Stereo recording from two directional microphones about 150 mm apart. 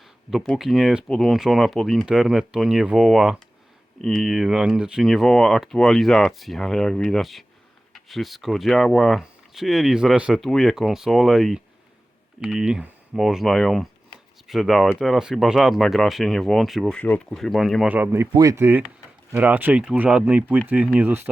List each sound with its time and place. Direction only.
0.3 s speech: centre (ahead or behind)
17.9 s speech: 15° right (ahead or behind)
18.3 s speech: 25° right (ahead or behind)